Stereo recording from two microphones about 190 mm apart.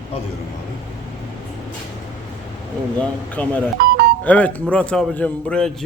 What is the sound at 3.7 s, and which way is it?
Music, 55° right (ahead or behind).